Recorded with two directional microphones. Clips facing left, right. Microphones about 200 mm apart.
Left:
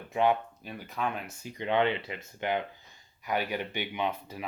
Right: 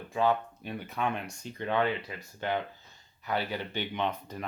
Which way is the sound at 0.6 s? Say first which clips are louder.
Right 1 dB; centre (ahead or behind).